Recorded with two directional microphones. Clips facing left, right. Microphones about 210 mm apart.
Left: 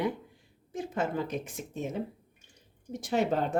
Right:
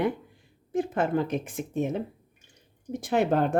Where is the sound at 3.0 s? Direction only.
60° right (ahead or behind).